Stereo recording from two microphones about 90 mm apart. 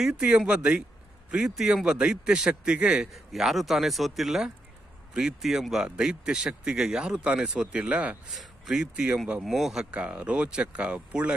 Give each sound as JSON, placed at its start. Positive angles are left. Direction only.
{"t": 0.0, "sound": "a man's voice", "side_deg": -10}
{"t": 8.3, "sound": "a man's voice", "side_deg": 0}